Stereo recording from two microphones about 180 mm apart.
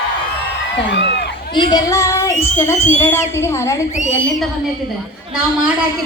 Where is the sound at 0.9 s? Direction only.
75° left (ahead or behind).